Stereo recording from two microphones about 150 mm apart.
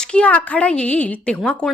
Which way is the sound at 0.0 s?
5° left (ahead or behind).